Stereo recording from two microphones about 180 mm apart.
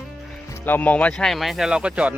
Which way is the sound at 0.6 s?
10° left (ahead or behind).